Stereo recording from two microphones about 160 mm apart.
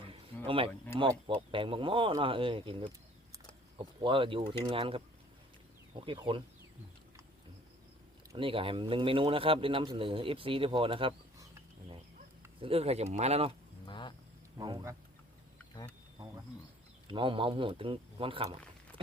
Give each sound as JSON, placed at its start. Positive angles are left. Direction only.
{"t": 0.4, "sound": "a man's voice", "side_deg": -35}
{"t": 6.1, "sound": "a man's voice", "side_deg": -30}
{"t": 8.4, "sound": "a man's voice", "side_deg": -35}
{"t": 12.5, "sound": "a man's voice", "side_deg": -35}
{"t": 13.8, "sound": "vehicle", "side_deg": 30}
{"t": 14.6, "sound": "speech", "side_deg": -25}
{"t": 17.1, "sound": "a man's voice", "side_deg": -30}